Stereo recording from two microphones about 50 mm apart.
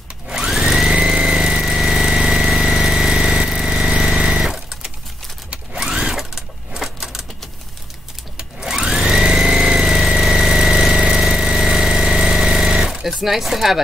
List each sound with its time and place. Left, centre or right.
0.5 s a sound: centre
0.9 s vehicle: centre
5.5 s sewing machine: centre
5.9 s sewing machine: centre
8.4 s sewing machine: centre
13.2 s speech: centre